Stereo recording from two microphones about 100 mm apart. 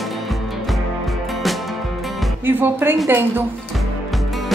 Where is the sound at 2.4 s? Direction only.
20° right (ahead or behind).